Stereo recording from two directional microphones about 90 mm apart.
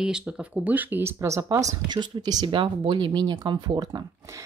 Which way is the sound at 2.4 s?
75° right (ahead or behind).